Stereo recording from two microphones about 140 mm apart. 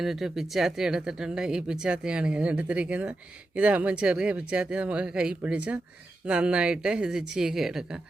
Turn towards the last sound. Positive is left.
turn(degrees=-5)  # may be behind; listen again after turning